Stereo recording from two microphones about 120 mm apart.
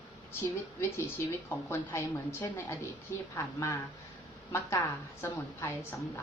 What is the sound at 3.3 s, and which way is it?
Speech, 25° left (ahead or behind).